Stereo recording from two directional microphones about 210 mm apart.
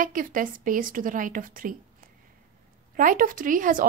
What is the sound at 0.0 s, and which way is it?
A woman's voice, 40° right (ahead or behind).